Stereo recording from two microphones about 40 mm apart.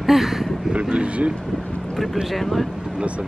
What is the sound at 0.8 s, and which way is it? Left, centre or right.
Speech, right.